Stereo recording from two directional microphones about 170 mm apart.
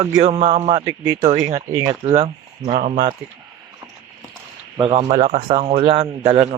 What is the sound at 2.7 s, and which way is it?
Speech, 45° right (ahead or behind).